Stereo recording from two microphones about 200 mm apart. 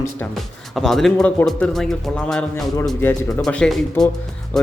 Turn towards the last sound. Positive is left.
turn(degrees=5)  # may be behind; listen again after turning